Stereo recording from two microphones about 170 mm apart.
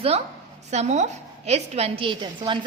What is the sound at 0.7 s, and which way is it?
A woman's voice, 40° right (ahead or behind).